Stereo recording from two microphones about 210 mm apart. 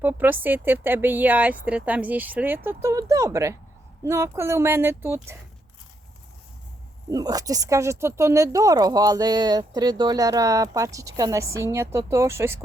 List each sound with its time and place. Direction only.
0.0 s speech: 10° right (ahead or behind)
7.1 s speech: 15° right (ahead or behind)